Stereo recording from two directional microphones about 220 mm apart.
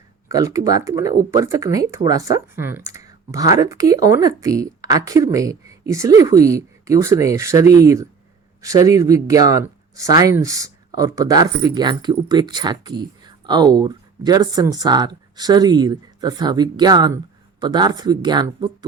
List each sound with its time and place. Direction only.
0.3 s speech: 15° right (ahead or behind)